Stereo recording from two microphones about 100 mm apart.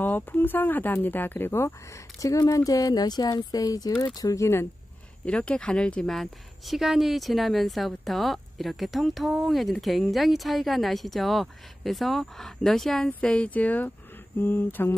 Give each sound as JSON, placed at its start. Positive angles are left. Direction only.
{"t": 0.0, "sound": "speech", "side_deg": 20}
{"t": 2.1, "sound": "speech", "side_deg": 35}
{"t": 5.2, "sound": "speech", "side_deg": 10}